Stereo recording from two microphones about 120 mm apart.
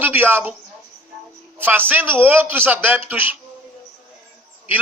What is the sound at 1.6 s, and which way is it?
A man's voice, 15° right (ahead or behind).